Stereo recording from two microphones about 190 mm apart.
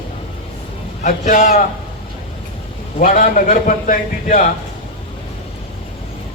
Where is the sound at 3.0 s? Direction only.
45° left (ahead or behind).